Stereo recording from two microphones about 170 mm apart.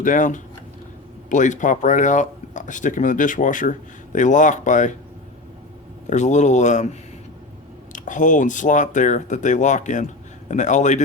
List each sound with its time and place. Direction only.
0.0 s speech: 50° left (ahead or behind)
6.1 s speech: 45° left (ahead or behind)
7.9 s speech: 50° left (ahead or behind)